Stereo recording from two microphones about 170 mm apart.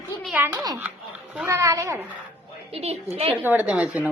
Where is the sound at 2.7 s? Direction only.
35° right (ahead or behind).